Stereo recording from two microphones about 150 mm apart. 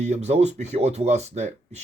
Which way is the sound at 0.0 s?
50° right (ahead or behind).